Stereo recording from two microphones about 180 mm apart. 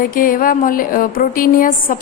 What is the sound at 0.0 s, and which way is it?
A woman's voice, 50° left (ahead or behind).